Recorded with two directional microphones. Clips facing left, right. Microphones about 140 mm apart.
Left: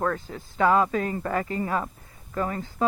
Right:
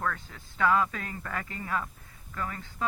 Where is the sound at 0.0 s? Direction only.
35° left (ahead or behind).